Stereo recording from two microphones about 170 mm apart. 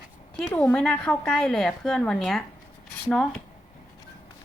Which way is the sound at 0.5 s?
10° left (ahead or behind).